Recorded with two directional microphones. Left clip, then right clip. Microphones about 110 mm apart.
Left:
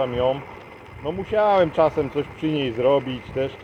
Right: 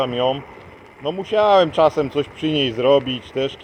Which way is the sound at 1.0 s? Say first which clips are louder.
Right 3 dB; 55° right (ahead or behind).